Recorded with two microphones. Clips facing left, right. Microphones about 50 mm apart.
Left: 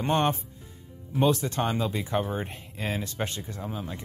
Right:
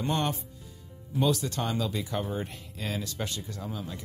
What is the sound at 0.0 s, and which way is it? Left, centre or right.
Speech, left.